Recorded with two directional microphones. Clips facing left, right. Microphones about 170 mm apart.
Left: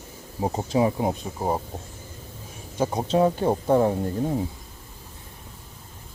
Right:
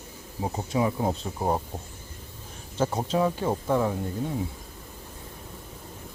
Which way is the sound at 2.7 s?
15° left (ahead or behind).